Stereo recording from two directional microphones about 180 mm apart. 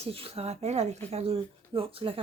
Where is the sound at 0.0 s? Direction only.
35° right (ahead or behind).